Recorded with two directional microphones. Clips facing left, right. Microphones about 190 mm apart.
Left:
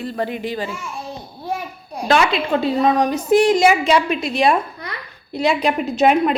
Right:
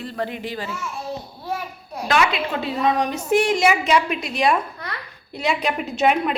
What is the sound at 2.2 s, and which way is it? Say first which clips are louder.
A woman's voice: left 2 dB; 35° left (ahead or behind).